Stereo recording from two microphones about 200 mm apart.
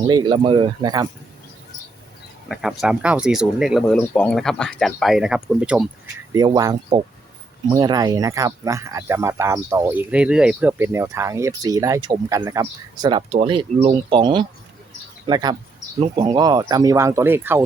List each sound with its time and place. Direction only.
0.1 s speech: 25° right (ahead or behind)
2.5 s speech: centre (ahead or behind)
6.3 s speech: 20° right (ahead or behind)